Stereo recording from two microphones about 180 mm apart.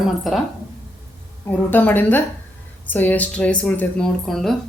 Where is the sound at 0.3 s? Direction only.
Centre (ahead or behind).